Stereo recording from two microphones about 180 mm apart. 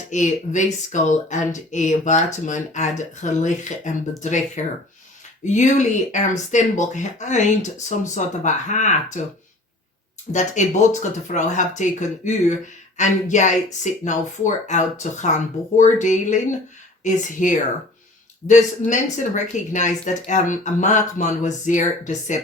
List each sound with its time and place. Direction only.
0.1 s speech: 40° left (ahead or behind)
10.3 s speech: 45° left (ahead or behind)